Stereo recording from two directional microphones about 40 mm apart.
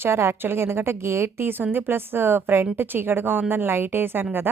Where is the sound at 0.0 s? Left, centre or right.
Right.